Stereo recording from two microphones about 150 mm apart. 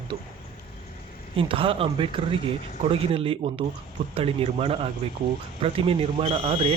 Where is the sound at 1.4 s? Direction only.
35° right (ahead or behind).